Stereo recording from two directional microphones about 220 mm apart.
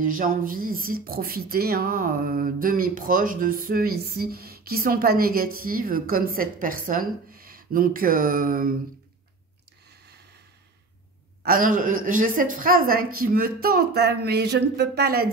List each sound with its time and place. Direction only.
0.0 s speech: 40° right (ahead or behind)
9.8 s a sound: 45° right (ahead or behind)
11.4 s a woman's voice: 40° right (ahead or behind)